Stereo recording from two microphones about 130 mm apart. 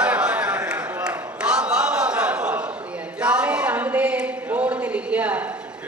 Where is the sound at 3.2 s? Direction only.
10° right (ahead or behind).